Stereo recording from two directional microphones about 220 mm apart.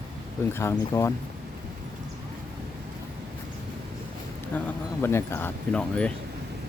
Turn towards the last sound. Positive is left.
turn(degrees=5)  # may be behind; listen again after turning